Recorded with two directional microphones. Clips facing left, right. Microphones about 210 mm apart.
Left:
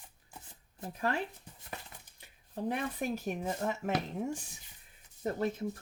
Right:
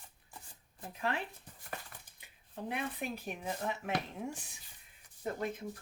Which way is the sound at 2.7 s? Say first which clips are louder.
Left 4 dB; 45° left (ahead or behind).